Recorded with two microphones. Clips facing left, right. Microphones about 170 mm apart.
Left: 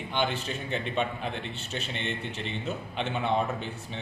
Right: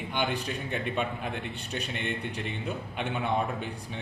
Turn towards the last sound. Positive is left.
turn(degrees=-10)  # may be behind; listen again after turning